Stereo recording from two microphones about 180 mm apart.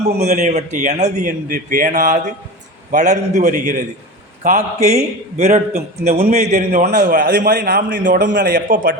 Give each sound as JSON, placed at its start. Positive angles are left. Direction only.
{"t": 0.2, "sound": "a man's voice", "side_deg": -40}
{"t": 6.8, "sound": "a man's voice", "side_deg": -50}